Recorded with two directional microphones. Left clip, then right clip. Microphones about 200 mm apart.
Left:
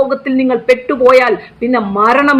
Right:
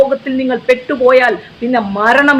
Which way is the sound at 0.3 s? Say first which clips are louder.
Left 3 dB; 25° left (ahead or behind).